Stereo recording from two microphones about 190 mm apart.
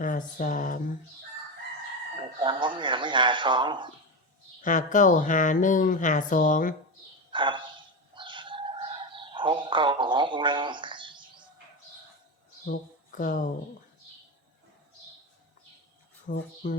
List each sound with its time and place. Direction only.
0.0 s speech: 45° left (ahead or behind)
2.1 s speech: 25° right (ahead or behind)
4.6 s speech: 40° left (ahead or behind)
7.3 s a sound: 25° right (ahead or behind)
8.1 s bird: 25° right (ahead or behind)
12.6 s speech: 45° left (ahead or behind)
16.3 s speech: 50° left (ahead or behind)